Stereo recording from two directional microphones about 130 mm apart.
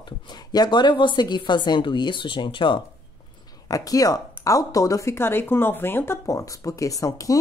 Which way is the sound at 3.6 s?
25° left (ahead or behind).